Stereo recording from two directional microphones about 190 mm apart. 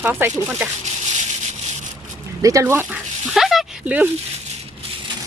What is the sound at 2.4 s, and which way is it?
Speech, 15° right (ahead or behind).